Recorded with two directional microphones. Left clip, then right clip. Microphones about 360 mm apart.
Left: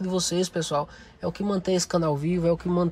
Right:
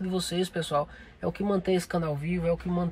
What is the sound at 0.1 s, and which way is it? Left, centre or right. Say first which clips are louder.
Speech: left 4 dB; centre.